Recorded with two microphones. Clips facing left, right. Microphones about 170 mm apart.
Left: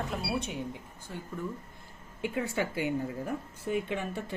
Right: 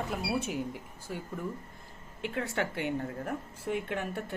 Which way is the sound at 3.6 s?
70° right (ahead or behind).